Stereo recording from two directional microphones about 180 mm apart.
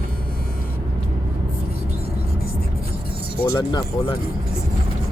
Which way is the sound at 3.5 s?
25° left (ahead or behind).